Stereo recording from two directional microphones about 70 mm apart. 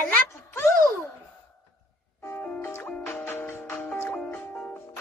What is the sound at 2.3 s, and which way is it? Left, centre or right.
Music, left.